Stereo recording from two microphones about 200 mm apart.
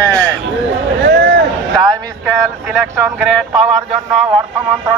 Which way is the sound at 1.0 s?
60° right (ahead or behind).